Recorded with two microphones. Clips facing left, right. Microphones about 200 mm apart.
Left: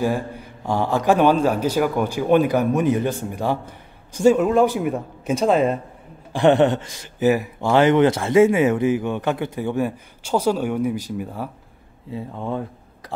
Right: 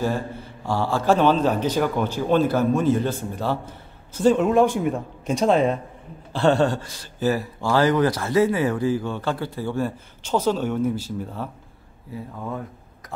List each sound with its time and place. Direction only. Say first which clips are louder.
0.0 s speech: left 2 dB; 10° left (ahead or behind)
6.3 s speech: left 4 dB; 20° left (ahead or behind)
12.1 s speech: left 4 dB; 25° left (ahead or behind)